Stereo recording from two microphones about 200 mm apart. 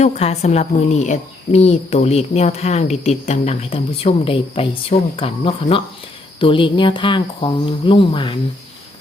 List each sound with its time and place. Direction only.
0.0 s a woman's voice: 35° left (ahead or behind)